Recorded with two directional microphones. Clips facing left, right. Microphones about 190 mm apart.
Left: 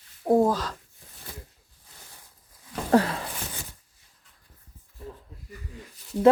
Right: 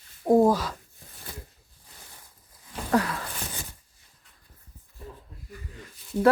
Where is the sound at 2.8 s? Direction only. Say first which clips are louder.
Left 4 dB; 30° left (ahead or behind).